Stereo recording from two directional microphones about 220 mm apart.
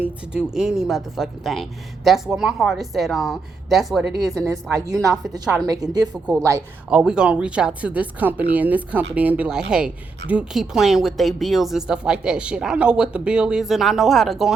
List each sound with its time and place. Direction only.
0.0 s a woman's voice: 5° right (ahead or behind)
4.9 s speech: 15° right (ahead or behind)
7.0 s a woman's voice: 5° right (ahead or behind)